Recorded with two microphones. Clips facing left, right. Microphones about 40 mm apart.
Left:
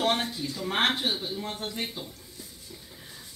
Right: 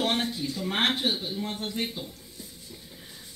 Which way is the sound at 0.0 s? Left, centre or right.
Centre.